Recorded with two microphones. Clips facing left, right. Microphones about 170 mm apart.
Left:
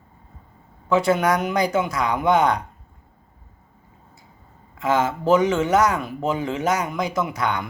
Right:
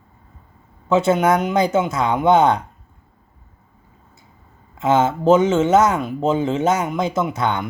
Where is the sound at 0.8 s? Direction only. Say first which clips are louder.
Right 3 dB; 25° right (ahead or behind).